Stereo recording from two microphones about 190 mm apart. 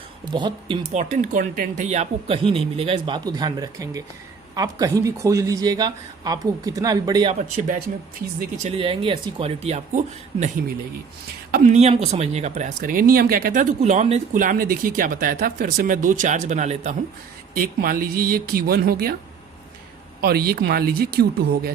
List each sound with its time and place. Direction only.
0.3 s speech: 25° right (ahead or behind)
0.9 s speech: 40° right (ahead or behind); by 7.3 s 20° right (ahead or behind)
7.3 s speech: 40° right (ahead or behind)
11.5 s speech: 40° right (ahead or behind)
20.2 s speech: 55° right (ahead or behind)